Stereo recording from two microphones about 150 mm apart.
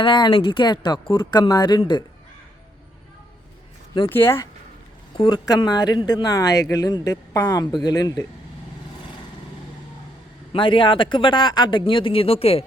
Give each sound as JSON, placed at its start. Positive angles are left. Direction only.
{"t": 0.0, "sound": "speech", "side_deg": 35}
{"t": 4.1, "sound": "speech", "side_deg": 15}
{"t": 5.1, "sound": "speech", "side_deg": 30}
{"t": 10.5, "sound": "speech", "side_deg": 35}